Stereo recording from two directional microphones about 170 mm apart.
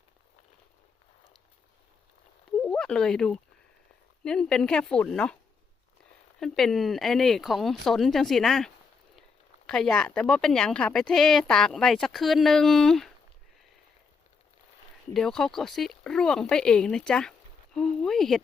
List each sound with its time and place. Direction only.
2.6 s a sound: 5° left (ahead or behind)
4.2 s speech: 5° left (ahead or behind)
6.4 s speech: centre (ahead or behind)
15.1 s speech: centre (ahead or behind)